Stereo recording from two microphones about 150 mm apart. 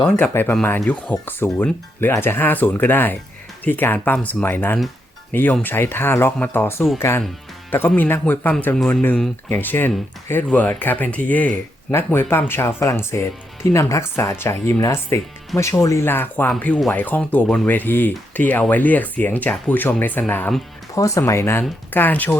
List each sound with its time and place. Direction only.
0.0 s speech: 10° left (ahead or behind)